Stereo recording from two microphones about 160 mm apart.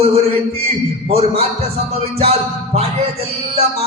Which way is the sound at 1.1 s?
40° right (ahead or behind).